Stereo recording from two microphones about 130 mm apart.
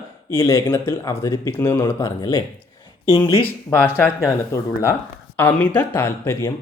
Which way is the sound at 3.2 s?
15° left (ahead or behind).